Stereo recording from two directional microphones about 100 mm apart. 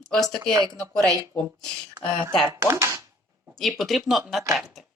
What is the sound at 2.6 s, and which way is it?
Speech, 30° right (ahead or behind).